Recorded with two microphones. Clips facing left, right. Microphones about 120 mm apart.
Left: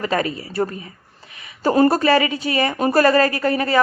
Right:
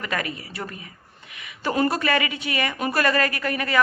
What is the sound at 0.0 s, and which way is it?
Speech, 30° left (ahead or behind).